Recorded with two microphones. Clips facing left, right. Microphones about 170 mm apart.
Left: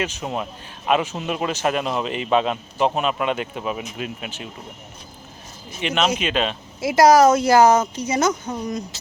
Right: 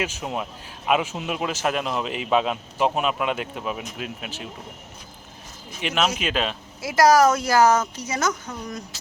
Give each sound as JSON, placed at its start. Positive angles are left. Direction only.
{"t": 0.0, "sound": "speech", "side_deg": -5}
{"t": 5.8, "sound": "speech", "side_deg": -5}
{"t": 6.8, "sound": "speech", "side_deg": 20}